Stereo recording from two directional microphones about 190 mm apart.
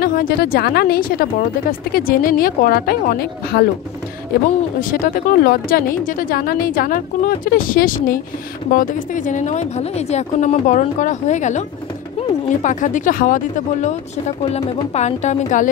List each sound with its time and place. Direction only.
0.0 s speech: 50° left (ahead or behind)
4.8 s speech: 45° left (ahead or behind)